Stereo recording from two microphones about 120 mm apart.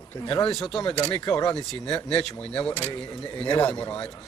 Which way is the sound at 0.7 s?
50° left (ahead or behind).